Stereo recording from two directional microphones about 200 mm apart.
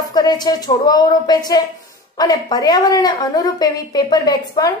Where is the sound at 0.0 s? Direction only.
20° left (ahead or behind).